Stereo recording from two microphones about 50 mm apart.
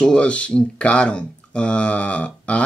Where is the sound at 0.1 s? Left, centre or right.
Left.